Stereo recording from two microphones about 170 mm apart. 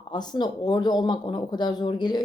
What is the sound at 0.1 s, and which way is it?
Speech, 25° left (ahead or behind).